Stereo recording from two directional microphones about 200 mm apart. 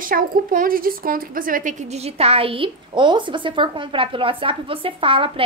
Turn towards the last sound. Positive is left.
turn(degrees=-25)  # may be behind; listen again after turning